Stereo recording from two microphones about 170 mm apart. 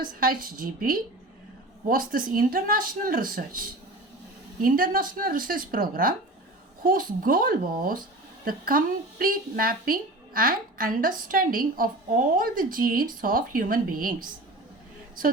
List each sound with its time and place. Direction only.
0.0 s a woman's voice: 55° right (ahead or behind)